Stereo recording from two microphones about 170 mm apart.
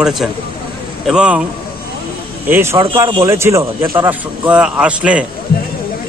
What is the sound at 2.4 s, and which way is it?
A man's voice, 15° right (ahead or behind).